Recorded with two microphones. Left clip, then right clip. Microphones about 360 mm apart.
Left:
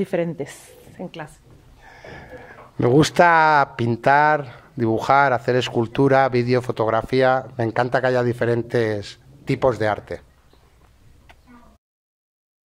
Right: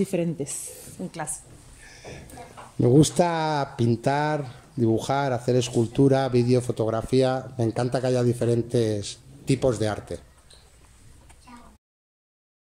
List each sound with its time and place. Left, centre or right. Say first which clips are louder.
0.0 s speech: left 4 dB; left
1.9 s a sound: left 3 dB; left
3.0 s speech: left 11 dB; left